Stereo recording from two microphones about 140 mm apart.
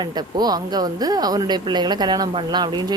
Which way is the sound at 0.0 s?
30° right (ahead or behind).